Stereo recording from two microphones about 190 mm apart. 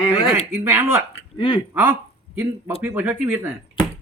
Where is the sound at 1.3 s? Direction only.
25° left (ahead or behind).